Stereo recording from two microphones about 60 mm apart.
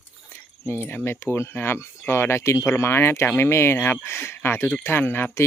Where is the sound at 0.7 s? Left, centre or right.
Left.